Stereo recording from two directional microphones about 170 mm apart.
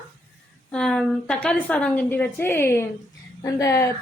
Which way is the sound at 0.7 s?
5° left (ahead or behind).